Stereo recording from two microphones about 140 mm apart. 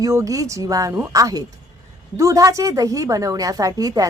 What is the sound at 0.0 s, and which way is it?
A woman's voice, 25° right (ahead or behind).